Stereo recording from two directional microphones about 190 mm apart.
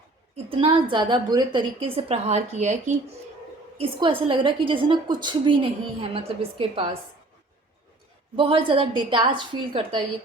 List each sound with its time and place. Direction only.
0.3 s a woman's voice: 30° right (ahead or behind)
3.8 s a woman's voice: 25° right (ahead or behind)
8.4 s a woman's voice: 30° right (ahead or behind)